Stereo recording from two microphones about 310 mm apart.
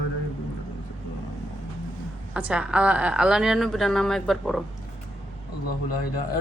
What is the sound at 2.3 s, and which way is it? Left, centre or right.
Speech, centre.